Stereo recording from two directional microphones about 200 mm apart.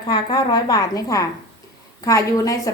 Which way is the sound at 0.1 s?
20° left (ahead or behind).